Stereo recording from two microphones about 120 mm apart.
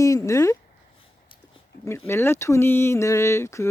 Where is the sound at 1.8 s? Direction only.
20° left (ahead or behind).